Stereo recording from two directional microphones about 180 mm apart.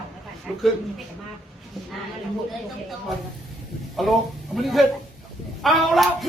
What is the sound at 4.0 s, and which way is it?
Speech, centre (ahead or behind).